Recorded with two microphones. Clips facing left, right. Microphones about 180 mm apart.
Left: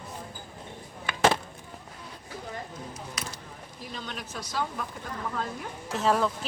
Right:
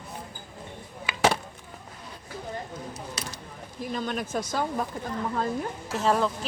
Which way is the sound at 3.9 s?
50° right (ahead or behind).